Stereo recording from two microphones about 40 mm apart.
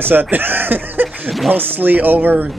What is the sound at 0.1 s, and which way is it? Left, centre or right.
Speech, right.